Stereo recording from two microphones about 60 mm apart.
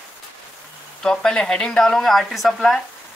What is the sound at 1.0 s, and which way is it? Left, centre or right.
Speech, centre.